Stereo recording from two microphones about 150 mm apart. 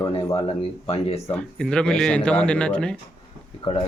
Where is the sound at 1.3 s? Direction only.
5° left (ahead or behind).